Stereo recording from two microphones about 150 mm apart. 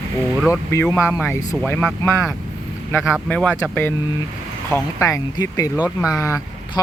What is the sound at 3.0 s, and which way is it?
Speech, 5° right (ahead or behind).